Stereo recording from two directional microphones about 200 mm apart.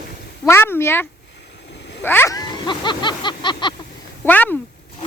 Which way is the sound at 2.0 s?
10° left (ahead or behind).